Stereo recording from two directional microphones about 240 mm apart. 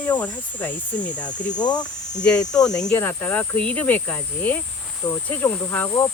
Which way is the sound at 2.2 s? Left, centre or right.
Centre.